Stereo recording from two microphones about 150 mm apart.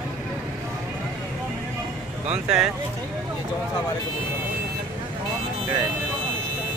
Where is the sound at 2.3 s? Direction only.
5° right (ahead or behind).